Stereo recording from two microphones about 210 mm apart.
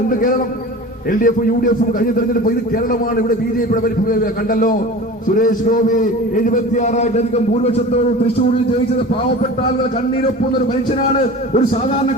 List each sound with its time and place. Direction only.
0.1 s a man's voice: 40° left (ahead or behind)